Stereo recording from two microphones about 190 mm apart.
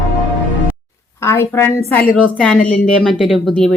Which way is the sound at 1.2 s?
15° left (ahead or behind).